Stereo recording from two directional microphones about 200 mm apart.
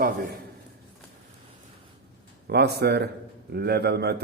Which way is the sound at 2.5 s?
55° right (ahead or behind).